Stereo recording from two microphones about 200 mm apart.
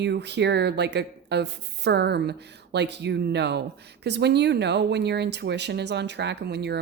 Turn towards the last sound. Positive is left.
turn(degrees=-55)  # may be behind; listen again after turning